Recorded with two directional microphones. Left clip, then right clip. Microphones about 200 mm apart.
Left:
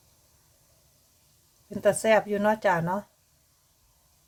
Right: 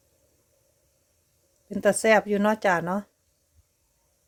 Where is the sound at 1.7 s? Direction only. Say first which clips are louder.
Right 2 dB; 40° right (ahead or behind).